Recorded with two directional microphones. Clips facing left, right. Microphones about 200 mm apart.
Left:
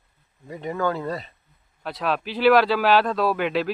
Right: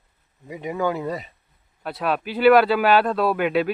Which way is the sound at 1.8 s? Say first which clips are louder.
Right 1 dB; centre (ahead or behind).